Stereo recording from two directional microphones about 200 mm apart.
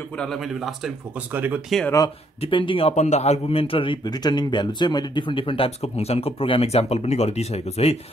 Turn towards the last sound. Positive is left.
turn(degrees=30)  # may be behind; listen again after turning